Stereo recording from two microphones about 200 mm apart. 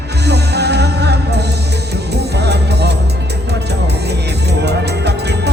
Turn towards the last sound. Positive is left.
turn(degrees=-55)  # may be behind; listen again after turning